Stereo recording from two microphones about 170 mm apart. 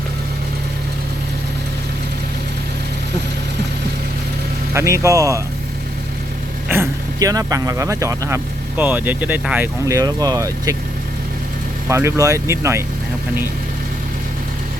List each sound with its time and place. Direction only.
4.7 s speech: 15° right (ahead or behind)
6.7 s speech: 15° right (ahead or behind)
11.9 s speech: 15° right (ahead or behind)